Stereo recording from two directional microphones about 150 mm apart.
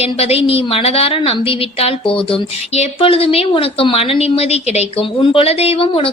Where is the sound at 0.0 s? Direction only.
40° left (ahead or behind).